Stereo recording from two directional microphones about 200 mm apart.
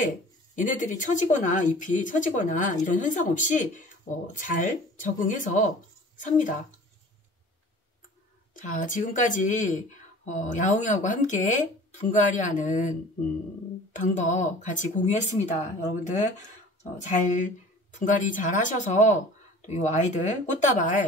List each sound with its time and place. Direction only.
0.6 s a woman's voice: 40° left (ahead or behind)
8.5 s a woman's voice: 40° left (ahead or behind)
13.9 s a woman's voice: 40° left (ahead or behind)